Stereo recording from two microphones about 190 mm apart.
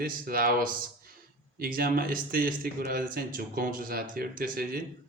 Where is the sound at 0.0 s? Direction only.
50° right (ahead or behind).